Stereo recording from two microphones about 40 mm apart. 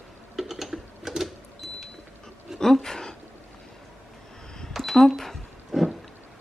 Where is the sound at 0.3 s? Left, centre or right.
Centre.